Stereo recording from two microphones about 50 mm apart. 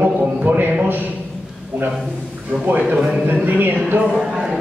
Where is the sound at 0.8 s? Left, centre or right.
Right.